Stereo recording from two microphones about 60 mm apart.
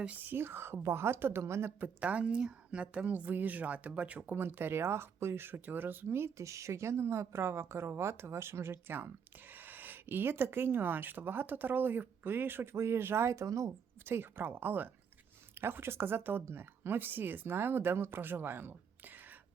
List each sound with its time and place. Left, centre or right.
0.3 s a woman's voice: right
2.0 s a woman's voice: right
4.4 s speech: right
12.7 s a woman's voice: right
14.0 s speech: right